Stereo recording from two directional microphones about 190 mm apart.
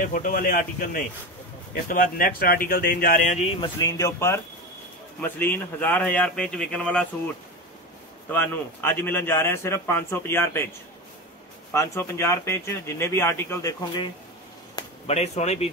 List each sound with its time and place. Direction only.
0.0 s speech: 45° left (ahead or behind)
3.6 s a man's voice: 20° left (ahead or behind)
8.3 s a man's voice: 10° left (ahead or behind)
11.7 s a man's voice: 15° left (ahead or behind)
15.0 s speech: 35° left (ahead or behind)